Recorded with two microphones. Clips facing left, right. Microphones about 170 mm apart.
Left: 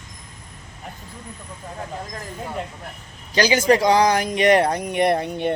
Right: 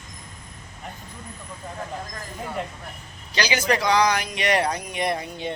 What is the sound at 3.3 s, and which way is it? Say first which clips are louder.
Speech: left 6 dB; 45° left (ahead or behind).